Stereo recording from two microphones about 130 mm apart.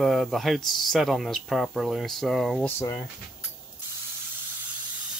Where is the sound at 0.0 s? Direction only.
Centre (ahead or behind).